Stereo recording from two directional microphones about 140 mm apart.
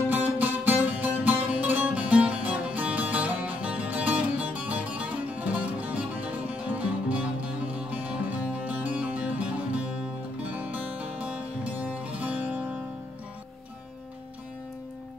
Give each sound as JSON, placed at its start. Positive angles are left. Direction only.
{"t": 0.1, "sound": "music", "side_deg": -15}